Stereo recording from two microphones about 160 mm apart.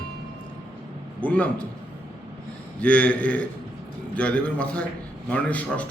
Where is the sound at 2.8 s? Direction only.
10° left (ahead or behind).